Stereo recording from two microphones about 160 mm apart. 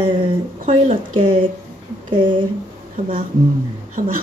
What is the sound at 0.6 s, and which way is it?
Speech, 45° right (ahead or behind).